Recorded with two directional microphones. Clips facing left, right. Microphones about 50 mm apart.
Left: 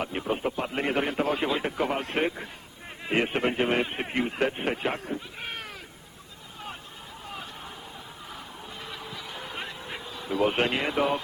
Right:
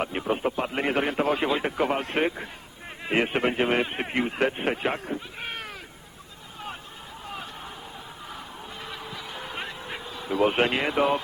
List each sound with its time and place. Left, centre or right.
0.0 s speech: right
8.9 s honk: right